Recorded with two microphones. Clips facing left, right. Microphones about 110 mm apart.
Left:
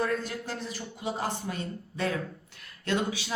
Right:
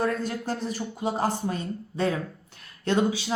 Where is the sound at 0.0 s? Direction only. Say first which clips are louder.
Right 3 dB; 40° right (ahead or behind).